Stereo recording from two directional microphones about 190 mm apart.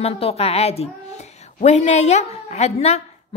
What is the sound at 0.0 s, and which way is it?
A woman's voice, 30° left (ahead or behind).